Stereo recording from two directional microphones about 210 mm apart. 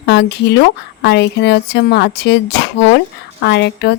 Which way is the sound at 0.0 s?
55° left (ahead or behind).